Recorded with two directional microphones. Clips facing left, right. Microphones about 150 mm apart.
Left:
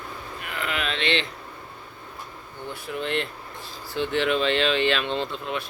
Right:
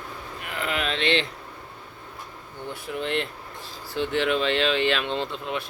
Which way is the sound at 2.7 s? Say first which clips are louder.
Even; 15° right (ahead or behind).